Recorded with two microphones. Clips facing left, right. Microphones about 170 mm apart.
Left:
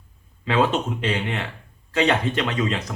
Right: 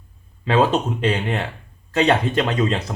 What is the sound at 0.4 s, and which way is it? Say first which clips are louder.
Speech: right 3 dB; 35° right (ahead or behind).